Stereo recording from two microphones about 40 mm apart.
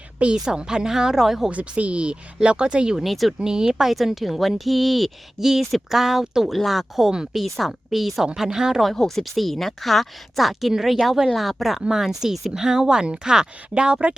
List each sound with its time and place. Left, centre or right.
0.3 s speech: centre
1.5 s speech: right
3.0 s speech: centre
3.4 s speech: centre
8.4 s speech: centre
9.0 s speech: centre; by 14.2 s right